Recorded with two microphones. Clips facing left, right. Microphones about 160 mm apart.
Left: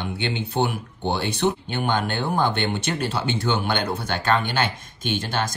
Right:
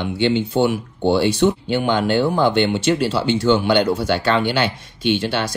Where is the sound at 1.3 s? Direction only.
55° left (ahead or behind).